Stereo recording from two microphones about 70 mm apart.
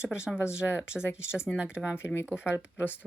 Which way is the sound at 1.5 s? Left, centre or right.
Centre.